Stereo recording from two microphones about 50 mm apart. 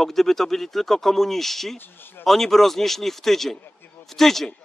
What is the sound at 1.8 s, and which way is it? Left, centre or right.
Speech, left.